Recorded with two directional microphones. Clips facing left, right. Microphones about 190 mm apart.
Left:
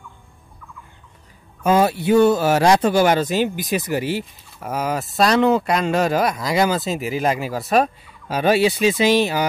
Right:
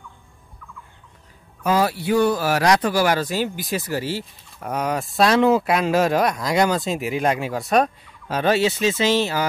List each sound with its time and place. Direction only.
1.6 s speech: 25° left (ahead or behind)
4.6 s speech: 5° left (ahead or behind)